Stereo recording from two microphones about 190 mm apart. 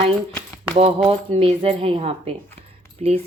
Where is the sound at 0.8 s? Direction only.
30° right (ahead or behind).